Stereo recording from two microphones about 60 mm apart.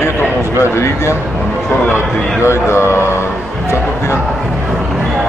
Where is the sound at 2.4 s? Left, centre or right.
Left.